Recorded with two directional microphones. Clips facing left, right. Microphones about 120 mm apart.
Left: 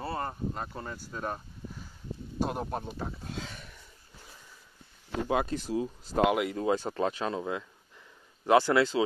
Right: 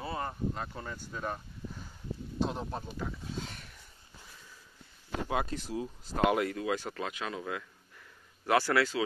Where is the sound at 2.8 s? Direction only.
30° left (ahead or behind).